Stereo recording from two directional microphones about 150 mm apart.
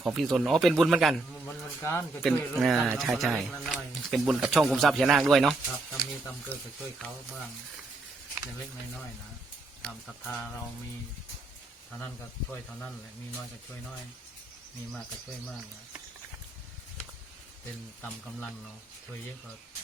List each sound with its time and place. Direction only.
0.0 s speech: centre (ahead or behind)
1.8 s speech: 15° left (ahead or behind)
2.2 s speech: centre (ahead or behind)